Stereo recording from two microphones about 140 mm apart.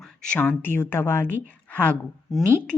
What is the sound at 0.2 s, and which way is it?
Speech, 10° left (ahead or behind).